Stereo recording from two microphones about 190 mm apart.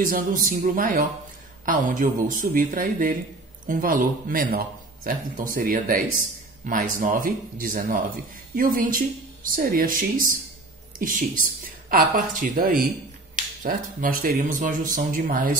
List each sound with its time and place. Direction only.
0.0 s a man's voice: 50° right (ahead or behind)